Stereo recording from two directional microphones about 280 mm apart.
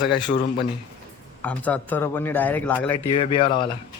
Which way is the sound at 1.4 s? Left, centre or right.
Centre.